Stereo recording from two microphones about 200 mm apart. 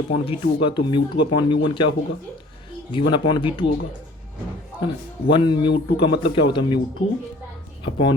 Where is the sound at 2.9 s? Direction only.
25° left (ahead or behind).